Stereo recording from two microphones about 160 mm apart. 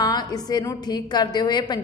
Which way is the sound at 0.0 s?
25° left (ahead or behind).